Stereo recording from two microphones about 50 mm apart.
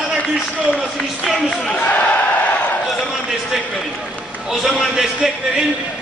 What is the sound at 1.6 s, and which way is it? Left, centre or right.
Speech, left.